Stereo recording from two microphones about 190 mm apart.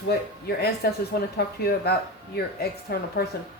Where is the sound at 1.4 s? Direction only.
60° left (ahead or behind).